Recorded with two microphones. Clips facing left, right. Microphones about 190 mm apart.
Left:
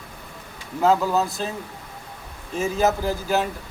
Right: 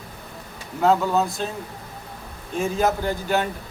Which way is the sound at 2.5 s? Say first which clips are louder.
Left 1 dB; 5° left (ahead or behind).